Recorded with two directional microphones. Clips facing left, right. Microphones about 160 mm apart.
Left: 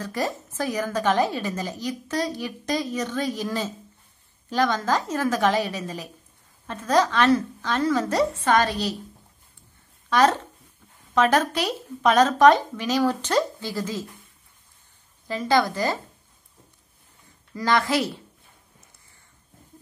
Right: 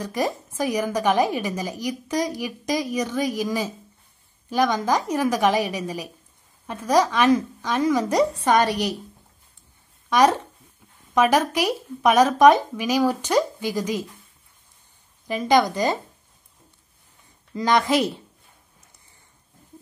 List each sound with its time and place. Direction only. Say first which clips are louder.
0.0 s a woman's voice: right 3 dB; 15° right (ahead or behind)
10.0 s a woman's voice: right 2 dB; 15° right (ahead or behind)
15.2 s a woman's voice: right 3 dB; 15° right (ahead or behind)
17.6 s speech: right 3 dB; 20° right (ahead or behind)